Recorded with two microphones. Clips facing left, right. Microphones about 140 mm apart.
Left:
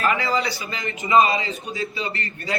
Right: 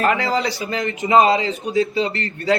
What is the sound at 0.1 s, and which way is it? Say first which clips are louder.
A man's voice: right 3 dB; 70° right (ahead or behind).